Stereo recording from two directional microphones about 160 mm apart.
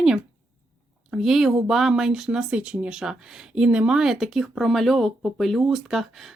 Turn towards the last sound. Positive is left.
turn(degrees=0)  # may be behind; listen again after turning